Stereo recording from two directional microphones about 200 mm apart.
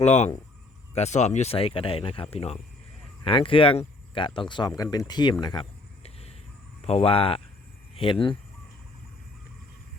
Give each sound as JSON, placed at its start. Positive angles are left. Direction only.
{"t": 0.0, "sound": "speech", "side_deg": 35}